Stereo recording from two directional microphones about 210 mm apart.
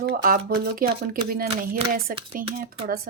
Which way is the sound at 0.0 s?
45° right (ahead or behind).